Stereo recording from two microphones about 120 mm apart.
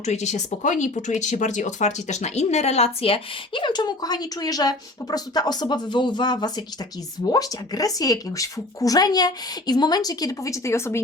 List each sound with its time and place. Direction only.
0.0 s speech: 70° left (ahead or behind); by 11.0 s 20° left (ahead or behind)